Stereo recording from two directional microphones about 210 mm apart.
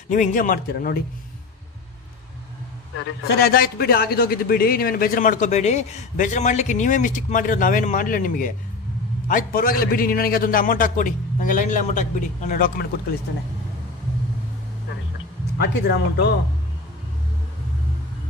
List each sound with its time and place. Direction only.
0.1 s a man's voice: 35° left (ahead or behind)
3.0 s a man's voice: 50° left (ahead or behind)
15.5 s speech: 50° left (ahead or behind)